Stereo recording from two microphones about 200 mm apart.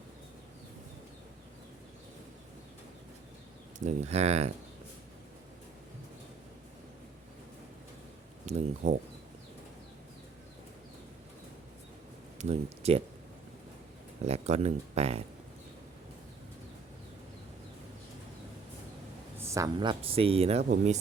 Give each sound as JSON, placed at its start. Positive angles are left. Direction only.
{"t": 3.8, "sound": "speech", "side_deg": -35}
{"t": 8.4, "sound": "speech", "side_deg": -35}
{"t": 12.4, "sound": "speech", "side_deg": -30}
{"t": 14.3, "sound": "speech", "side_deg": -35}
{"t": 19.4, "sound": "speech", "side_deg": -15}